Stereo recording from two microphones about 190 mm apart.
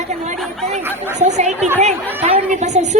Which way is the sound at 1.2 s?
35° right (ahead or behind).